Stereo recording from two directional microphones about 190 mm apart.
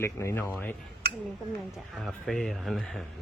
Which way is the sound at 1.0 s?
55° right (ahead or behind).